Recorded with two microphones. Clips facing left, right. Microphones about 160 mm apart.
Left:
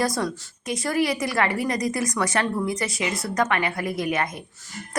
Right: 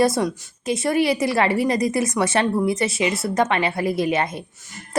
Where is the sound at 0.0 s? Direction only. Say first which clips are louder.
Right 6 dB; 25° right (ahead or behind).